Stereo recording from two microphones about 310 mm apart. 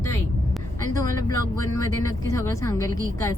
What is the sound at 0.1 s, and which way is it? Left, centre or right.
Vehicle, centre.